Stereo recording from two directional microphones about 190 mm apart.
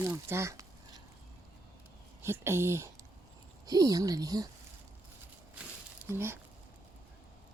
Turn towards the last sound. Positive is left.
turn(degrees=-10)  # may be behind; listen again after turning